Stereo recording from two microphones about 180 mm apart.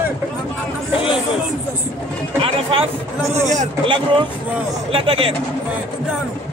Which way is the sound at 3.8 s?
25° right (ahead or behind).